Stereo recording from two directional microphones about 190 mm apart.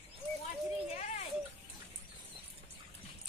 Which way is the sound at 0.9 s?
35° left (ahead or behind).